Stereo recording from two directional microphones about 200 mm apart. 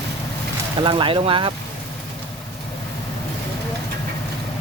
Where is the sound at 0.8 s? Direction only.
25° right (ahead or behind).